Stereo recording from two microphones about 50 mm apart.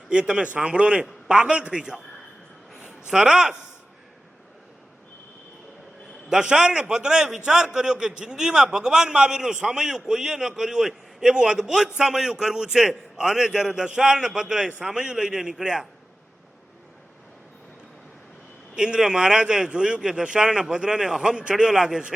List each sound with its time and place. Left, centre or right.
0.1 s a man's voice: centre
3.1 s a man's voice: centre
6.3 s a man's voice: centre
18.8 s a man's voice: centre